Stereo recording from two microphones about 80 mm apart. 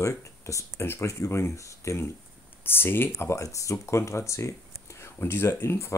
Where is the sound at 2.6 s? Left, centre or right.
Left.